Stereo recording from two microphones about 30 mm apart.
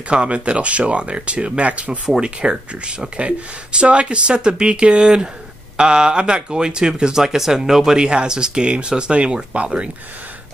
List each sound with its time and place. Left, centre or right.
0.1 s speech: right
2.0 s speech: right
3.2 s speech: right
5.0 s speech: right
7.2 s speech: centre
8.0 s speech: right
9.5 s speech: right